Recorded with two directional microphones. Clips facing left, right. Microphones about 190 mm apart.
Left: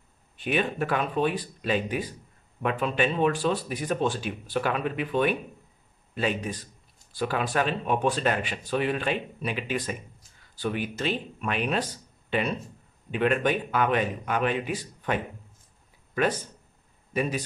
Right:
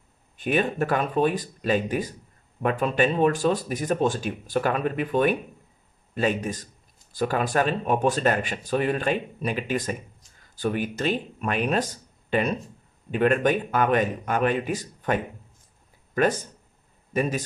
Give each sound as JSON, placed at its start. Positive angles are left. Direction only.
{"t": 0.4, "sound": "speech", "side_deg": -45}
{"t": 17.1, "sound": "a man's voice", "side_deg": -45}